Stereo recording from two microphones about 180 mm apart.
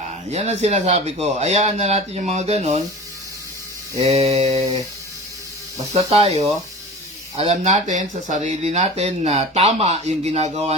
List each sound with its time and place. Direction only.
0.3 s speech: 40° right (ahead or behind)
4.0 s speech: 35° right (ahead or behind)
5.9 s speech: 35° right (ahead or behind)